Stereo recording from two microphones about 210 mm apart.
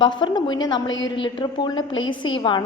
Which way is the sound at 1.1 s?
20° left (ahead or behind).